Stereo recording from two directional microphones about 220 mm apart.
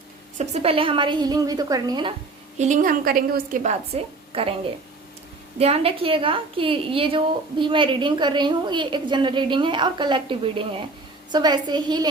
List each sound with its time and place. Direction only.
0.3 s a woman's voice: 30° right (ahead or behind)
2.6 s a woman's voice: 35° right (ahead or behind)
5.5 s a woman's voice: 25° right (ahead or behind)